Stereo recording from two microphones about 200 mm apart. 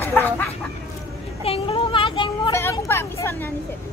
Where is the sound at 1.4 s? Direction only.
30° left (ahead or behind).